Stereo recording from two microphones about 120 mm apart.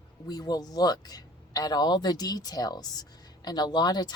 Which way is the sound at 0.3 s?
35° left (ahead or behind).